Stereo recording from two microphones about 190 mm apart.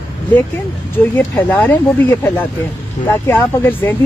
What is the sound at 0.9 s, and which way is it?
Speech, 10° left (ahead or behind).